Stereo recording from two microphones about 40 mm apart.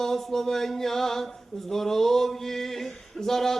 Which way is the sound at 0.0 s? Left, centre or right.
Centre.